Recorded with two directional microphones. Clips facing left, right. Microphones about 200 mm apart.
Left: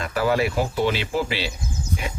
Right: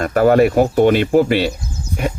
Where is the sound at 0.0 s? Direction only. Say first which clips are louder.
Right 10 dB; 50° right (ahead or behind).